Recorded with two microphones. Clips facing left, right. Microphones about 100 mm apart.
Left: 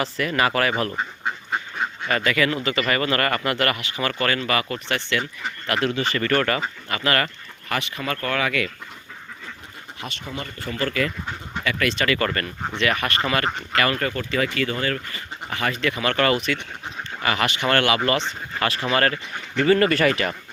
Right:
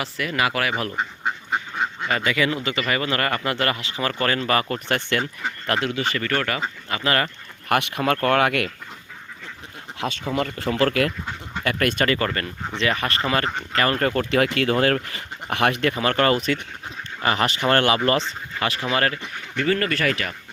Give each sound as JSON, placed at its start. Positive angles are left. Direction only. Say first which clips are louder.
{"t": 0.0, "sound": "speech", "louder": "left 2 dB", "side_deg": -5}
{"t": 5.8, "sound": "speech", "louder": "left 2 dB", "side_deg": -10}
{"t": 6.6, "sound": "speech", "louder": "even", "side_deg": -25}
{"t": 7.7, "sound": "speech", "louder": "right 6 dB", "side_deg": -60}
{"t": 10.3, "sound": "speech", "louder": "right 7 dB", "side_deg": -90}
{"t": 11.6, "sound": "speech", "louder": "right 2 dB", "side_deg": -50}
{"t": 12.2, "sound": "speech", "louder": "left 1 dB", "side_deg": -20}
{"t": 14.0, "sound": "speech", "louder": "right 4 dB", "side_deg": -60}
{"t": 15.9, "sound": "speech", "louder": "right 1 dB", "side_deg": -35}
{"t": 18.6, "sound": "speech", "louder": "left 1 dB", "side_deg": -15}
{"t": 19.5, "sound": "speech", "louder": "left 5 dB", "side_deg": 10}